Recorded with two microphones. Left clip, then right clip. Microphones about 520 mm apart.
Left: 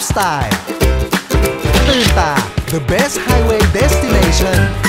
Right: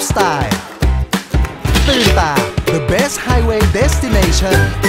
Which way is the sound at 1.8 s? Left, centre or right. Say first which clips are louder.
Right 1 dB; centre.